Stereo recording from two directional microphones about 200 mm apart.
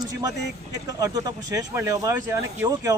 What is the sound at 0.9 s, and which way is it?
A man's voice, 20° right (ahead or behind).